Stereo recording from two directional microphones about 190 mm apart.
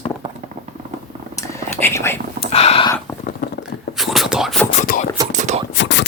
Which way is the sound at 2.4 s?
35° left (ahead or behind).